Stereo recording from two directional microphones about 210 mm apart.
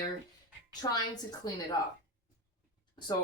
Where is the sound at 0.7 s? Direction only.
20° left (ahead or behind).